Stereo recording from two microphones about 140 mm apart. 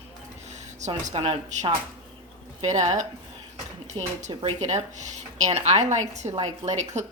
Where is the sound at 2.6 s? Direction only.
55° right (ahead or behind).